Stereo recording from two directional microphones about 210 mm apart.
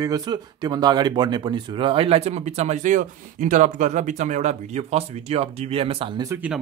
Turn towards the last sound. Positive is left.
turn(degrees=-5)  # may be behind; listen again after turning